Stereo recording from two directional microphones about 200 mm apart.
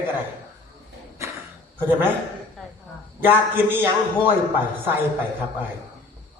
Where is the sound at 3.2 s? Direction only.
10° right (ahead or behind).